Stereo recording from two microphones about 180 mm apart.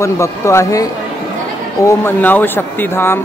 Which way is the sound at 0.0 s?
15° left (ahead or behind).